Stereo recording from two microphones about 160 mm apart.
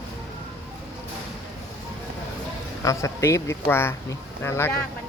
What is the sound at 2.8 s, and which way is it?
Speech, 20° left (ahead or behind).